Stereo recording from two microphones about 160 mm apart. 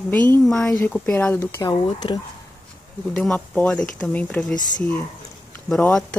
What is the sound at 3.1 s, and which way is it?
Speech, 10° left (ahead or behind).